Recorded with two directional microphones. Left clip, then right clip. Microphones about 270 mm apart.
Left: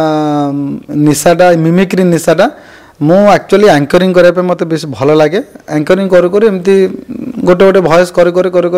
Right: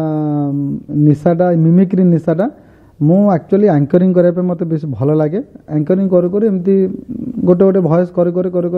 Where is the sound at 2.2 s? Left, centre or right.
Left.